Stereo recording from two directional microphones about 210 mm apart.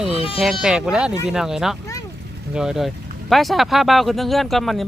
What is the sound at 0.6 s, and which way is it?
Speech, 5° right (ahead or behind).